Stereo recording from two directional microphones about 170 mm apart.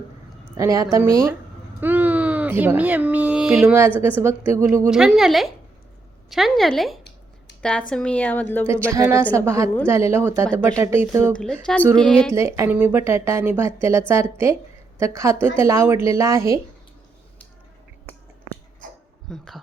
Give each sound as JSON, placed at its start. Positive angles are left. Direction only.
{"t": 0.5, "sound": "a woman's voice", "side_deg": -20}
{"t": 4.9, "sound": "a woman's voice", "side_deg": -5}
{"t": 8.9, "sound": "a woman's voice", "side_deg": -15}
{"t": 11.3, "sound": "a woman's voice", "side_deg": 5}
{"t": 12.3, "sound": "a woman's voice", "side_deg": -15}
{"t": 19.3, "sound": "speech", "side_deg": 0}